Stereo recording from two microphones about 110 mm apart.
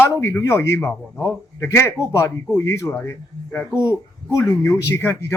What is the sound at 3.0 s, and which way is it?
Speech, 15° left (ahead or behind).